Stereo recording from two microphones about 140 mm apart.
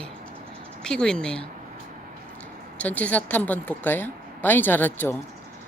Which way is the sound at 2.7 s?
10° left (ahead or behind).